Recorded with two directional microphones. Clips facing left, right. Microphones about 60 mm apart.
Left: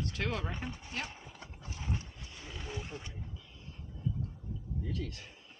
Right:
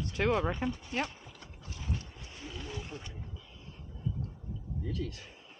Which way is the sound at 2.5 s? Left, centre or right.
Centre.